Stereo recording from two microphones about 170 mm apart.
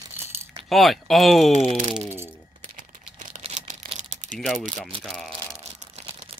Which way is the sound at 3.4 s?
45° right (ahead or behind).